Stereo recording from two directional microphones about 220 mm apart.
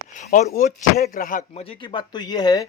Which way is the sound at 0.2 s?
35° left (ahead or behind).